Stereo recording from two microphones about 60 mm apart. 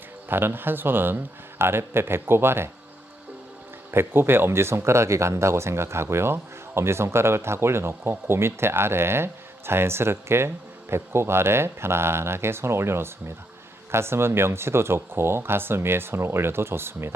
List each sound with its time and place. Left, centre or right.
0.3 s a man's voice: right
3.9 s speech: right